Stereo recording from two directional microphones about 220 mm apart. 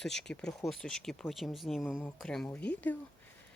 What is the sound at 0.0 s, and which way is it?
Speech, centre (ahead or behind).